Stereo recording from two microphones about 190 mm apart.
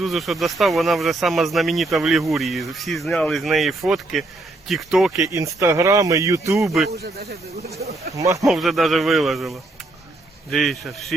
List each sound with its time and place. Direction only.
0.0 s speech: centre (ahead or behind)
5.2 s speech: 15° right (ahead or behind)
7.0 s speech: 55° right (ahead or behind)
8.1 s speech: 15° right (ahead or behind)
8.4 s speech: centre (ahead or behind)